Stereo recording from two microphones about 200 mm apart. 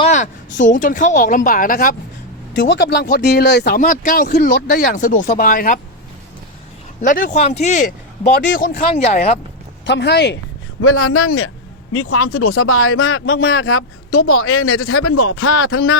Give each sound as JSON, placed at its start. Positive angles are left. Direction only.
{"t": 0.0, "sound": "a woman's voice", "side_deg": 35}
{"t": 2.6, "sound": "speech", "side_deg": 65}
{"t": 7.0, "sound": "a woman's voice", "side_deg": 40}
{"t": 8.4, "sound": "speech", "side_deg": 50}
{"t": 9.8, "sound": "speech", "side_deg": 60}
{"t": 10.8, "sound": "speech", "side_deg": 90}